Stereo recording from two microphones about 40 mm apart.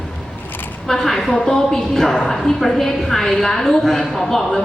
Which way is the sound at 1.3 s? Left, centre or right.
Left.